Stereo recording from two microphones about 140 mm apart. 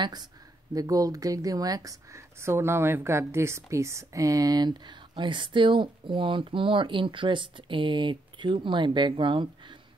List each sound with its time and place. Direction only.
0.0 s speech: 30° right (ahead or behind)